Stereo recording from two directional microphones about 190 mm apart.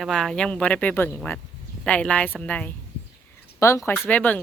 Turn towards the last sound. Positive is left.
turn(degrees=10)  # may be behind; listen again after turning